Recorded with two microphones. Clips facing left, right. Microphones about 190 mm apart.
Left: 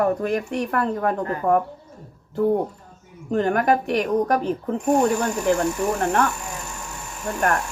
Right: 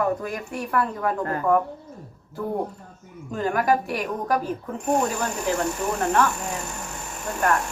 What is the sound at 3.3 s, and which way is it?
A woman's voice, 60° left (ahead or behind).